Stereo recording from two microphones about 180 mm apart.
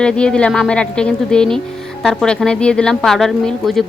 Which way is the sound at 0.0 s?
5° left (ahead or behind).